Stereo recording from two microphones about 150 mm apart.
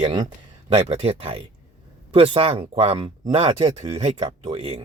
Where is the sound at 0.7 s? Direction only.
45° right (ahead or behind).